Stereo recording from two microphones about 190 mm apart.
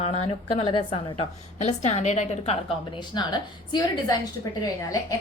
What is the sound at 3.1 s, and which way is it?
A woman's voice, 20° left (ahead or behind).